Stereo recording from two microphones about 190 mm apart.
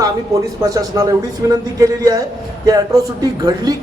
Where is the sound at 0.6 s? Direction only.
20° right (ahead or behind).